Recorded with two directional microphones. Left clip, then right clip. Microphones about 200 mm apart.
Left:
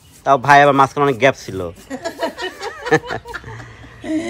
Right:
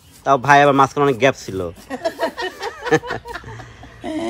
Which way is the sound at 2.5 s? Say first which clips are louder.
Left 3 dB; 15° right (ahead or behind).